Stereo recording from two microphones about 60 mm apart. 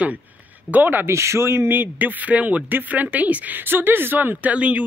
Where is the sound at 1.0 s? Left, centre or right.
Right.